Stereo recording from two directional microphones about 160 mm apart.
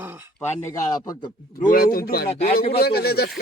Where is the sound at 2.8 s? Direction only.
80° left.